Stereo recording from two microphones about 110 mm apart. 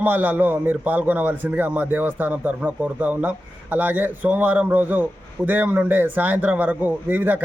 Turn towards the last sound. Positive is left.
turn(degrees=-15)  # may be behind; listen again after turning